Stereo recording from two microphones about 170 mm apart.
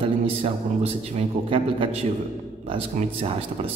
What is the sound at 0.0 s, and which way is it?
A man's voice, 35° right (ahead or behind).